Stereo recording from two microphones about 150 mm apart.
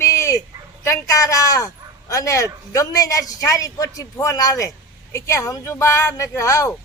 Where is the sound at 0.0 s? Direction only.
20° left (ahead or behind).